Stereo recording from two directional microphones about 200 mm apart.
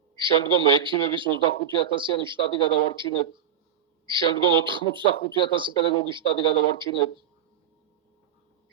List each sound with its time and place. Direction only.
0.2 s a man's voice: 25° right (ahead or behind)